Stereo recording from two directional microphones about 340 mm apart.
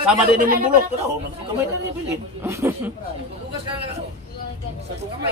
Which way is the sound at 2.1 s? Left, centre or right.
Centre.